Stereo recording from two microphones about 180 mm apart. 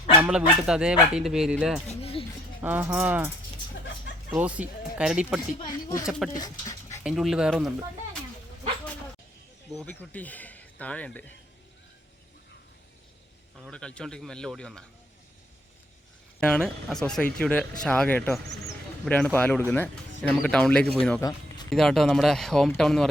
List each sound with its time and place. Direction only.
0.2 s speech: 5° right (ahead or behind)
2.0 s a sound: 35° left (ahead or behind)
2.6 s speech: 10° right (ahead or behind)
4.4 s speech: 10° right (ahead or behind)
5.4 s speech: 20° left (ahead or behind)
6.1 s speech: centre (ahead or behind)
6.3 s dog: 20° left (ahead or behind)
7.0 s speech: centre (ahead or behind)
9.8 s speech: 10° left (ahead or behind)
13.6 s speech: 5° left (ahead or behind)
16.4 s speech: 5° left (ahead or behind)
21.2 s speech: 20° left (ahead or behind)
21.7 s speech: centre (ahead or behind)